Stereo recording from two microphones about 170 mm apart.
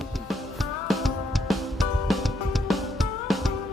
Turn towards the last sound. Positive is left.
turn(degrees=0)  # may be behind; listen again after turning